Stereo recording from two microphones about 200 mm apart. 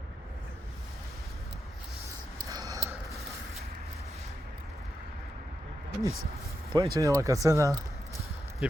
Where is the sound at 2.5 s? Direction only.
15° right (ahead or behind).